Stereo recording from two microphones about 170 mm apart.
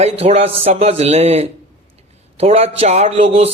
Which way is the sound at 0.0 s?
35° right (ahead or behind).